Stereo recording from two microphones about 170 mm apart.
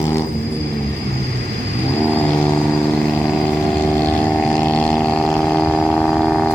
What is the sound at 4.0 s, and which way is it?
Vehicle, 10° left (ahead or behind).